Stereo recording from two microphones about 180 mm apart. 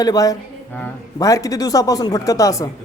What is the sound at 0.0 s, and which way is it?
Speech, 20° left (ahead or behind).